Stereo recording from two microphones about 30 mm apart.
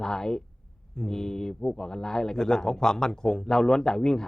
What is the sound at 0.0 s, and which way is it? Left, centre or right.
Speech, left.